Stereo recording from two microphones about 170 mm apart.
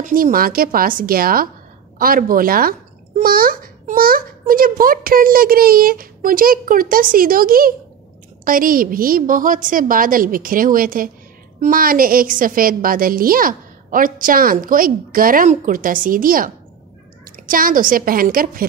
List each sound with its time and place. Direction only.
0.0 s a woman's voice: 55° right (ahead or behind)